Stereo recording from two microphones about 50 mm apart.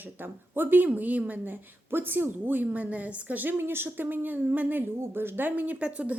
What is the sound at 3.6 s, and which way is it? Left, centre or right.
A woman's voice, right.